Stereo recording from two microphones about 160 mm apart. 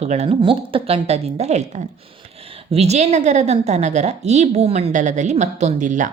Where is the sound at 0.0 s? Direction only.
45° right (ahead or behind).